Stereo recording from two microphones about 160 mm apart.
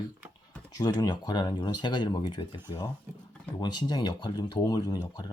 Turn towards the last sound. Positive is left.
turn(degrees=25)  # may be behind; listen again after turning